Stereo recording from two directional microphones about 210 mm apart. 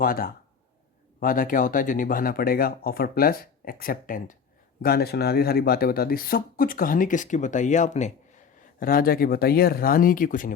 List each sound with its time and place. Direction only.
0.0 s speech: 45° left (ahead or behind)